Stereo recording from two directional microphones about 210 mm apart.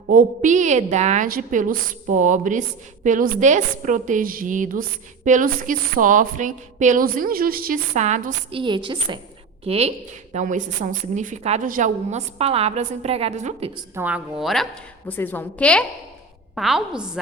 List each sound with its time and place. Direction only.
0.1 s a woman's voice: 40° right (ahead or behind)
13.9 s a woman's voice: 5° right (ahead or behind)